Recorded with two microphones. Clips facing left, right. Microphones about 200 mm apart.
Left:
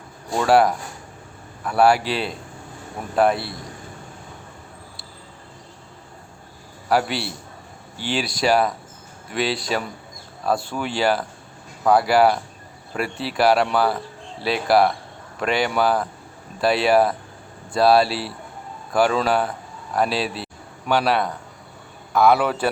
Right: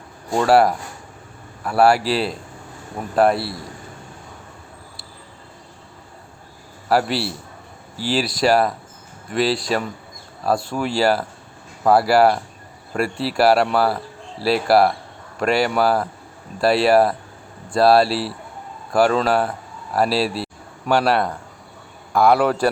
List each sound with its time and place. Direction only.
0.3 s speech: centre (ahead or behind)
6.8 s speech: centre (ahead or behind)